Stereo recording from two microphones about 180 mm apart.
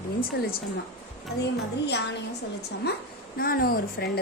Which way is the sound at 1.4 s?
70° left (ahead or behind).